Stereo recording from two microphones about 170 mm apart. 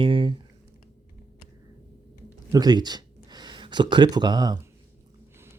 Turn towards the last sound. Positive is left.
turn(degrees=-25)  # may be behind; listen again after turning